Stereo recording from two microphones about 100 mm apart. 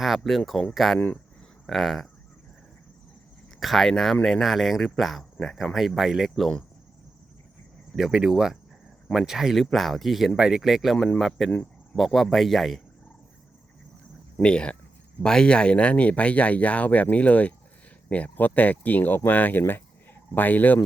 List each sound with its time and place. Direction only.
0.0 s speech: centre (ahead or behind)
0.9 s speech: 20° left (ahead or behind)
1.6 s speech: centre (ahead or behind)
3.6 s speech: centre (ahead or behind)
7.9 s speech: 5° right (ahead or behind)
14.4 s speech: 10° left (ahead or behind)